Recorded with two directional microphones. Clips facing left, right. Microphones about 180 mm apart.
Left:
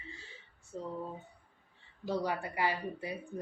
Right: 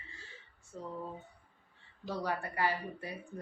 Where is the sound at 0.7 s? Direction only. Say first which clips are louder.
Left 3 dB; 30° left (ahead or behind).